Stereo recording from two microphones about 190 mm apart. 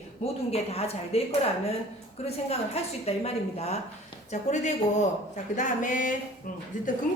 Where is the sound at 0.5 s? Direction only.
30° left (ahead or behind).